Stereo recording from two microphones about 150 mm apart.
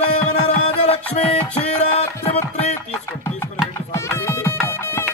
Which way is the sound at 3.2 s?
20° left (ahead or behind).